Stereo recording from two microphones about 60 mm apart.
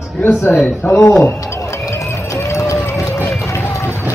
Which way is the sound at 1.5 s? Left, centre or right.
Left.